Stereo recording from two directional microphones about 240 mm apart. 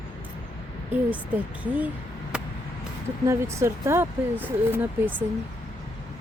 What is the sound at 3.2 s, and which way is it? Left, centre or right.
Speech, centre.